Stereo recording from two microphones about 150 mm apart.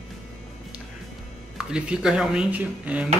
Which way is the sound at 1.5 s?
5° right (ahead or behind).